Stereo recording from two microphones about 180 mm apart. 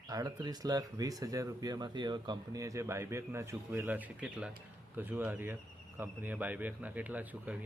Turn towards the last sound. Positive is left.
turn(degrees=-10)  # may be behind; listen again after turning